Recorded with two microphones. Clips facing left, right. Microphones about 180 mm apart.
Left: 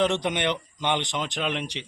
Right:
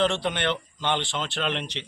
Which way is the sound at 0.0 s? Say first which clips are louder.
Left 1 dB; 15° left (ahead or behind).